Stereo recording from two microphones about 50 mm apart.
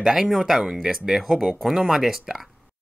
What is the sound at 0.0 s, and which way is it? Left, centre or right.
Speech, centre.